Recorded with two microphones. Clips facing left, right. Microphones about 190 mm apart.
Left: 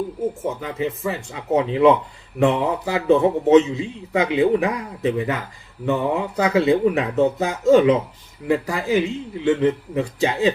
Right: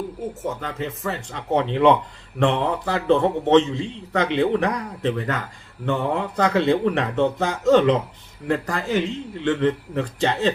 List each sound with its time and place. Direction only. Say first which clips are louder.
0.4 s a man's voice: left 3 dB; 10° left (ahead or behind)